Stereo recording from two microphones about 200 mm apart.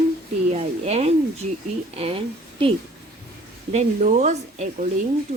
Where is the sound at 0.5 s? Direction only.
30° right (ahead or behind).